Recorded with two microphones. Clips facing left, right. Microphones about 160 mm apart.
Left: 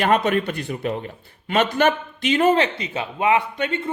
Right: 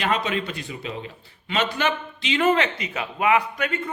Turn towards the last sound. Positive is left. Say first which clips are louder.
# left 3 dB
turn(degrees=30)  # may be behind; listen again after turning